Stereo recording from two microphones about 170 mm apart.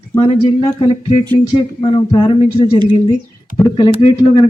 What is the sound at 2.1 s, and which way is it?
Speech, 30° left (ahead or behind).